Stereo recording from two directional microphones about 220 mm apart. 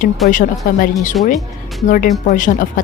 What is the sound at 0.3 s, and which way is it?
Speech, 35° left (ahead or behind).